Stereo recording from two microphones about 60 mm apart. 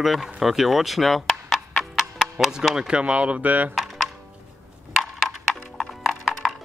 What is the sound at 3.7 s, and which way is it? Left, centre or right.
Music, centre.